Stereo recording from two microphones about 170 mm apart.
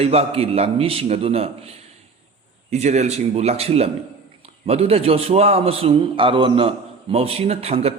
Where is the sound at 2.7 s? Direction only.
40° right (ahead or behind).